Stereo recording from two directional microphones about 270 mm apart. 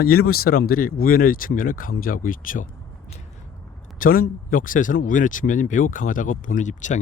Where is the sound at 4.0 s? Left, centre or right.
Left.